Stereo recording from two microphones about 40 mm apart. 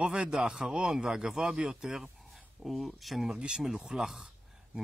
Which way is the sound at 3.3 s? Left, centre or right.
Right.